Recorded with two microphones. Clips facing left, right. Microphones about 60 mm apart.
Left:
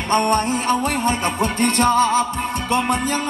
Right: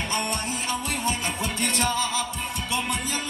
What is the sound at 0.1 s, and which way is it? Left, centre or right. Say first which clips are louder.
Music: left 16 dB; left.